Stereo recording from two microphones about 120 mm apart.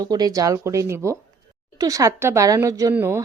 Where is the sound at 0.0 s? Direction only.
35° right (ahead or behind).